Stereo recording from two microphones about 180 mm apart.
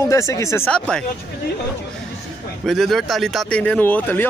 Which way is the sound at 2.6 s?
Centre (ahead or behind).